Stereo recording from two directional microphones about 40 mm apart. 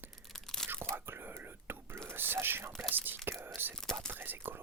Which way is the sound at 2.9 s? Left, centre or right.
Right.